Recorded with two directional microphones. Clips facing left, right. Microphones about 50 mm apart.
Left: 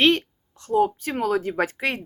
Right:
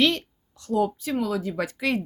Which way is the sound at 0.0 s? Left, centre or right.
Left.